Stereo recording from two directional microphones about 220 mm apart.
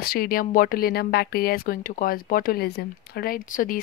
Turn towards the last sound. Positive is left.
turn(degrees=40)  # may be behind; listen again after turning